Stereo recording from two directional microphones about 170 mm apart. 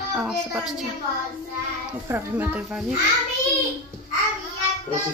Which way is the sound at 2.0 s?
10° right (ahead or behind).